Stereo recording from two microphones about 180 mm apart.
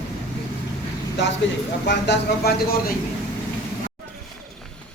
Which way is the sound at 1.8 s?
70° left (ahead or behind).